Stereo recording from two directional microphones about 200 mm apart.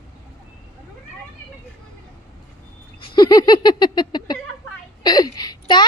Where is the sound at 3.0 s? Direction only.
25° left (ahead or behind).